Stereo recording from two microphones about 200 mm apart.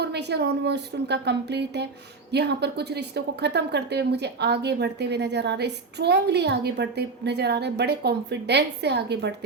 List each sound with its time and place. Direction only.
0.0 s a woman's voice: 55° right (ahead or behind)